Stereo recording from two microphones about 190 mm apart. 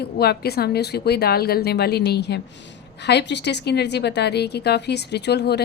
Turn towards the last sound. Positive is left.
turn(degrees=60)  # may be behind; listen again after turning